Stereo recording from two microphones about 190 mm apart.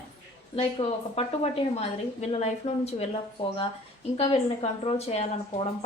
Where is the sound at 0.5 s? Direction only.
30° left (ahead or behind).